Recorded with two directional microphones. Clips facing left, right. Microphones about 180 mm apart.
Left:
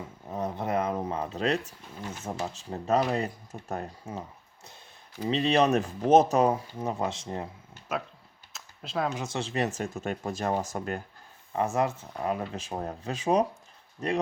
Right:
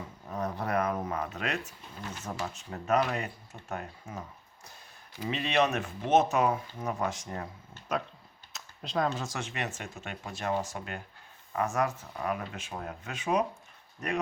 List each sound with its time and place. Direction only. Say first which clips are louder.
0.3 s speech: left 2 dB; 20° left (ahead or behind); by 3.8 s 40° left (ahead or behind)
4.0 s speech: left 4 dB; 25° left (ahead or behind)
7.7 s speech: right 1 dB; 5° left (ahead or behind)
8.5 s a sound: even; centre (ahead or behind)
9.3 s speech: left 7 dB; 30° left (ahead or behind)
11.5 s speech: left 3 dB; 25° left (ahead or behind)